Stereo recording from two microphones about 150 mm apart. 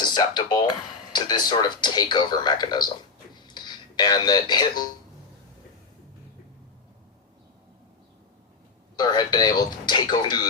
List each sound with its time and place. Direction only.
0.0 s speech: 30° left (ahead or behind)
3.4 s a sound: 30° left (ahead or behind)
9.0 s speech: 25° left (ahead or behind)